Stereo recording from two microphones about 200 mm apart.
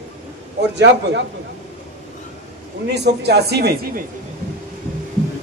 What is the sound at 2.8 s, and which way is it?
A man's voice, 55° right (ahead or behind).